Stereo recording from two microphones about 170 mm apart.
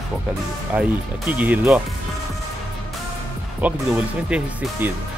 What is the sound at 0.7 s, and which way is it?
Speech, 10° right (ahead or behind).